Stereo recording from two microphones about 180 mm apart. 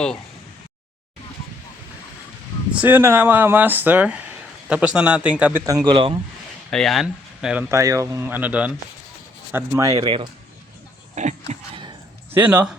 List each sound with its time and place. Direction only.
2.7 s speech: 10° right (ahead or behind); by 6.1 s 30° right (ahead or behind)
6.7 s speech: centre (ahead or behind)
7.7 s speech: 15° right (ahead or behind)
11.1 s a sound: 40° right (ahead or behind)
12.3 s speech: 10° right (ahead or behind)